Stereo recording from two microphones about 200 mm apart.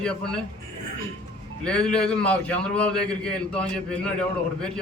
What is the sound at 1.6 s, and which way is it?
A man's voice, 5° left (ahead or behind).